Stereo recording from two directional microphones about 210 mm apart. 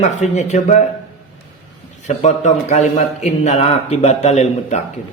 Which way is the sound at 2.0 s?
35° left (ahead or behind).